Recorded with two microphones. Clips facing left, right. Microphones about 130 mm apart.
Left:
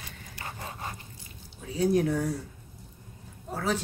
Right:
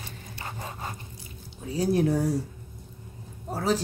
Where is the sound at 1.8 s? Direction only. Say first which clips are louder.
Right 1 dB; 35° right (ahead or behind).